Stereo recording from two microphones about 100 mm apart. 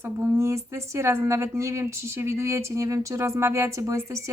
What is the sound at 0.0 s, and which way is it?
Speech, 25° right (ahead or behind).